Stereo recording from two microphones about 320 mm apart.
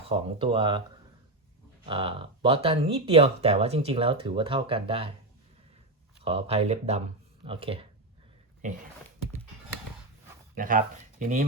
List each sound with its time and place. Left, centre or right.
0.1 s speech: centre
6.2 s speech: centre
10.5 s speech: right